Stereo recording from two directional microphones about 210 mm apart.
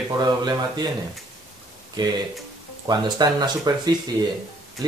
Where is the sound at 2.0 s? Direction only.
20° right (ahead or behind).